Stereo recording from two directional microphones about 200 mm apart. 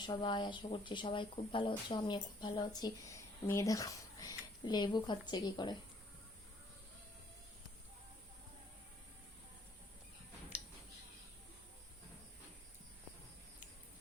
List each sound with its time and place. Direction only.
0.0 s speech: 20° left (ahead or behind)